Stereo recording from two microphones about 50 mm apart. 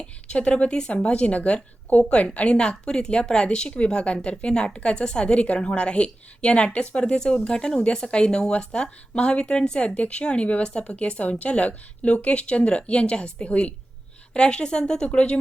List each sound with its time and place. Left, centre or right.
0.3 s speech: left